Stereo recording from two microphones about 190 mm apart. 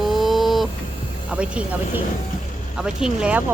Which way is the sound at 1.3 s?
5° right (ahead or behind).